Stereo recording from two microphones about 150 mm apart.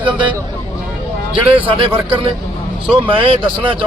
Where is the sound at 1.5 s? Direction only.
35° right (ahead or behind).